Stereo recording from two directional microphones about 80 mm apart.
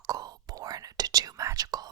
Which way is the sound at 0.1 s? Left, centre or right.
Right.